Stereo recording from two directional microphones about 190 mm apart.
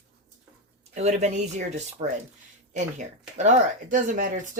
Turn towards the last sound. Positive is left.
turn(degrees=-45)  # may be behind; listen again after turning